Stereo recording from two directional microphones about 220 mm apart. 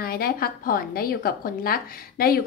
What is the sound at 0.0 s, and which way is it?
A woman's voice, 45° left (ahead or behind).